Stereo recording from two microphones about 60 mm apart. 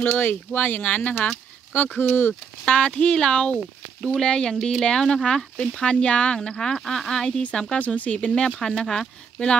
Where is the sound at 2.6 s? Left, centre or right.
Centre.